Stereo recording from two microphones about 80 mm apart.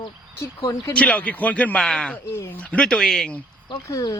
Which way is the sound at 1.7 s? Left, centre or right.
Centre.